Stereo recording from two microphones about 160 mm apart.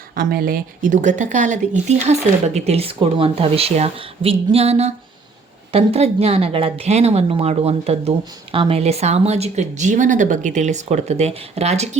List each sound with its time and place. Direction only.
0.1 s speech: 65° right (ahead or behind); by 11.9 s 45° right (ahead or behind)